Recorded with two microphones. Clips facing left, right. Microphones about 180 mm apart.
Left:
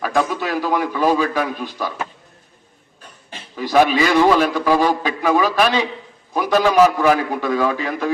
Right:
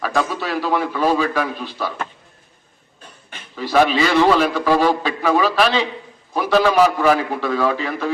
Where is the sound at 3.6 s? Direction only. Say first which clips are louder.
Left 1 dB; 15° left (ahead or behind).